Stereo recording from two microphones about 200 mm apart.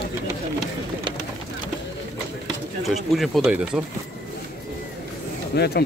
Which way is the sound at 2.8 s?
Centre (ahead or behind).